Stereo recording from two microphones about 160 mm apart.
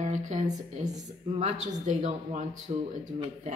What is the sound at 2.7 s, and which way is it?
Speech, 35° right (ahead or behind).